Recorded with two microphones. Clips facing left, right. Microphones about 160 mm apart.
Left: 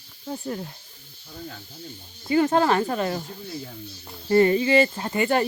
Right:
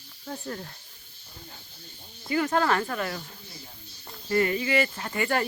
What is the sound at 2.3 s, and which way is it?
Speech, 25° left (ahead or behind).